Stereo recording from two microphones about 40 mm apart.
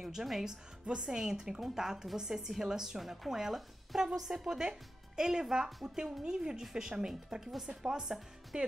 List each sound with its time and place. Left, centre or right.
0.0 s speech: centre
0.8 s a woman's voice: right